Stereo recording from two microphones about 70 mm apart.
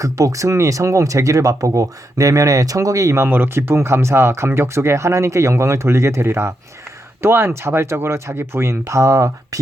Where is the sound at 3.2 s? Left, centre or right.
Right.